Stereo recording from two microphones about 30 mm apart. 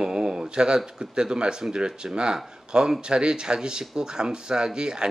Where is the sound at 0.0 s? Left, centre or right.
Right.